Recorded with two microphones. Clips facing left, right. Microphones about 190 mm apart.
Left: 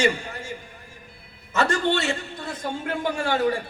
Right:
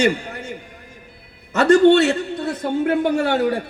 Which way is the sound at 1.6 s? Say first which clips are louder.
Right 11 dB; 60° right (ahead or behind).